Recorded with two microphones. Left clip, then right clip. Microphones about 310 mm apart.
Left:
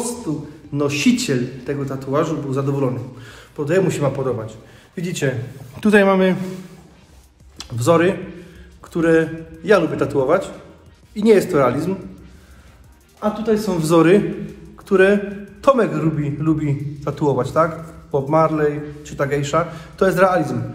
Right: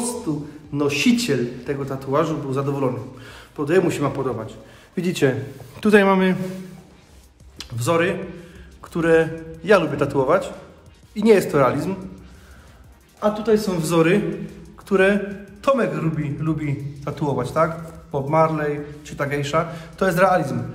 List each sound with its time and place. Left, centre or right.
0.7 s a man's voice: centre
4.9 s speech: centre
5.8 s a man's voice: centre
7.5 s a man's voice: centre
13.2 s a man's voice: centre